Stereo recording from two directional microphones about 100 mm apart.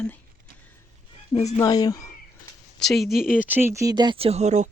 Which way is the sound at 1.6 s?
40° left (ahead or behind).